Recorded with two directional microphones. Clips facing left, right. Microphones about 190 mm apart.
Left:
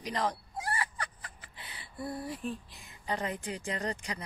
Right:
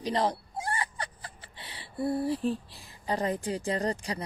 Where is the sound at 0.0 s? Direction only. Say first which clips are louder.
Right 5 dB; 30° right (ahead or behind).